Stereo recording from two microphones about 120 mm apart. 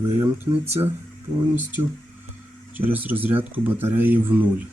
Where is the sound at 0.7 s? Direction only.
20° right (ahead or behind).